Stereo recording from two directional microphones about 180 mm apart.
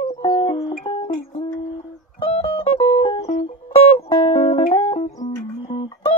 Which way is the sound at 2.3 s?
30° left (ahead or behind).